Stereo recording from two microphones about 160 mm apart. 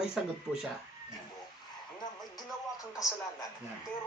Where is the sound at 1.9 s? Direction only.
25° left (ahead or behind).